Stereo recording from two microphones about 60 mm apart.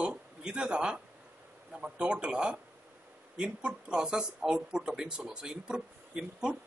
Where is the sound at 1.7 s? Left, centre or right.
Centre.